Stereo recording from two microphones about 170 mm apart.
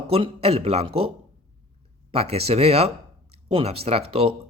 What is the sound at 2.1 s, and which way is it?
Speech, 35° right (ahead or behind).